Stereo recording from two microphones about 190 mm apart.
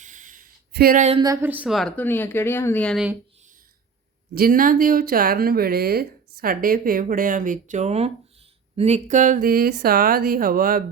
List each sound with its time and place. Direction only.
0.0 s a sound: 40° right (ahead or behind)
1.2 s speech: 15° right (ahead or behind); by 3.1 s 5° left (ahead or behind)
4.4 s speech: 50° right (ahead or behind)